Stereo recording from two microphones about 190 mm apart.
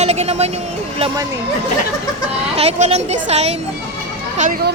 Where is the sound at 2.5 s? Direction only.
30° right (ahead or behind).